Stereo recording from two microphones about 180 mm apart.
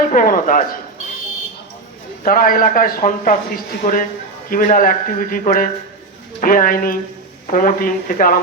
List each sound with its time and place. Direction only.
0.1 s speech: 50° left (ahead or behind)
2.2 s a man's voice: 50° left (ahead or behind)